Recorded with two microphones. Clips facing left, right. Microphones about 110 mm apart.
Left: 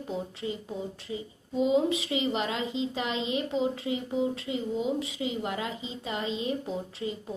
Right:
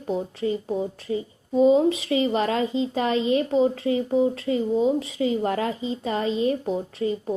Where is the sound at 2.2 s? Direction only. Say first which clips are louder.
Right 7 dB; 45° right (ahead or behind).